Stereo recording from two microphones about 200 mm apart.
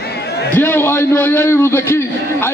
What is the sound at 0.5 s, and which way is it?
A man's voice, 10° left (ahead or behind).